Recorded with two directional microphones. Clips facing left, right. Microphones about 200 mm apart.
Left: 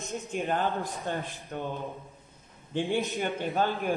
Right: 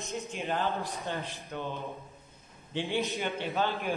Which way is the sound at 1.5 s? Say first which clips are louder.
Left 2 dB; 45° left (ahead or behind).